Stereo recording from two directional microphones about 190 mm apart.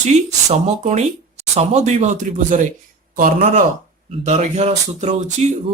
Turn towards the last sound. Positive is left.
turn(degrees=-35)  # may be behind; listen again after turning